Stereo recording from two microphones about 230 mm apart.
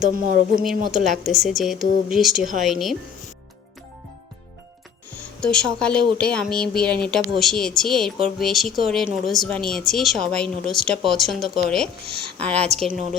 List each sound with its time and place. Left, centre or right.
0.0 s speech: right
0.9 s speech: centre
5.4 s speech: centre